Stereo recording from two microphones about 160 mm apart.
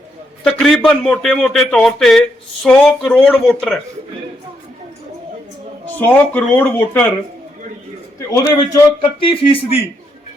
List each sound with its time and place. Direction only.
0.4 s speech: 5° left (ahead or behind)
6.0 s speech: 10° left (ahead or behind)
8.3 s a man's voice: 20° left (ahead or behind)
9.2 s a man's voice: 35° left (ahead or behind)